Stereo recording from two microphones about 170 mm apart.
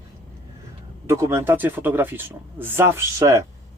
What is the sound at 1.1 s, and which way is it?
Speech, 15° right (ahead or behind).